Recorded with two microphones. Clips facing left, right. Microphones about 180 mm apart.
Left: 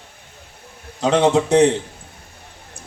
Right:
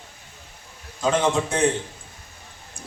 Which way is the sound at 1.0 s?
70° left (ahead or behind).